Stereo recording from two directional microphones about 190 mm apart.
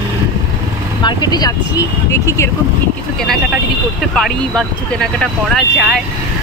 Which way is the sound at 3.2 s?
Centre (ahead or behind).